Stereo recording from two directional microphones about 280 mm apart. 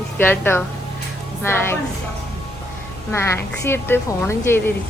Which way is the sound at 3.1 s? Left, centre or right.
Centre.